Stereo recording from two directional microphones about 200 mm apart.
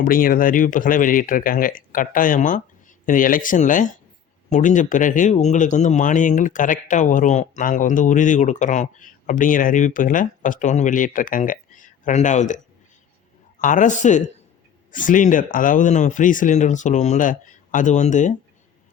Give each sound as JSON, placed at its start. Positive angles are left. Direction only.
{"t": 0.0, "sound": "speech", "side_deg": 45}
{"t": 13.6, "sound": "speech", "side_deg": 40}